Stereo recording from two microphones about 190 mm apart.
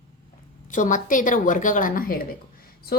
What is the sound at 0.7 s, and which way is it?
A woman's voice, 45° left (ahead or behind).